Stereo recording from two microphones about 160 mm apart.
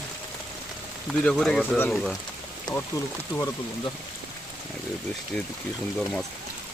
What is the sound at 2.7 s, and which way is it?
Speech, 25° left (ahead or behind).